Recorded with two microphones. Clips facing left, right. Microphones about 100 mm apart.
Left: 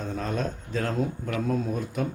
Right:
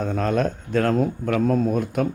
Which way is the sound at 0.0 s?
65° right (ahead or behind).